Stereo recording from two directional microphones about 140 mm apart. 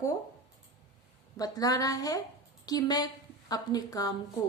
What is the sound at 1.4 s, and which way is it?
A woman's voice, 25° left (ahead or behind).